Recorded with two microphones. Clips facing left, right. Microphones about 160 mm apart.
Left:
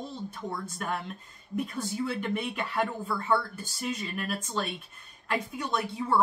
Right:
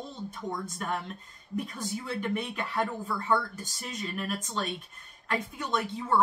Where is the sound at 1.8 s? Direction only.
5° left (ahead or behind).